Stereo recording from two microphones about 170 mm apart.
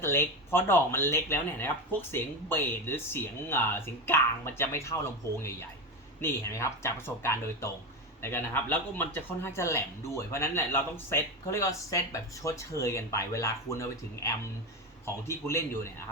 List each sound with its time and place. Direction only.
0.0 s speech: 15° left (ahead or behind)
6.2 s speech: 15° left (ahead or behind)